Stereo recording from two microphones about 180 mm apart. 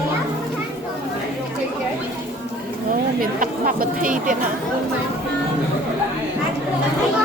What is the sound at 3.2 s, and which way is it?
A woman's voice, 50° right (ahead or behind).